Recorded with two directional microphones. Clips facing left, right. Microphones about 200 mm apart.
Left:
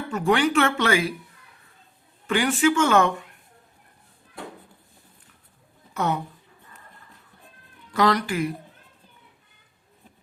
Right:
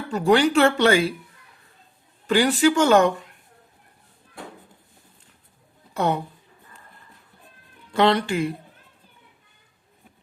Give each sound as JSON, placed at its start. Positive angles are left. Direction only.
{"t": 0.1, "sound": "speech", "side_deg": -35}
{"t": 2.2, "sound": "speech", "side_deg": -35}
{"t": 5.9, "sound": "speech", "side_deg": -30}
{"t": 7.9, "sound": "speech", "side_deg": -25}